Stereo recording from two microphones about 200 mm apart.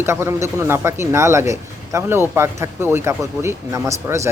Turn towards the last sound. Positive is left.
turn(degrees=-15)  # may be behind; listen again after turning